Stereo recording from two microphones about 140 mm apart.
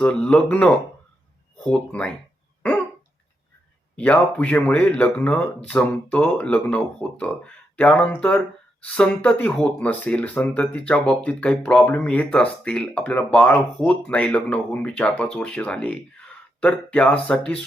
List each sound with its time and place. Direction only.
0.0 s speech: 10° left (ahead or behind)
3.9 s speech: 10° left (ahead or behind)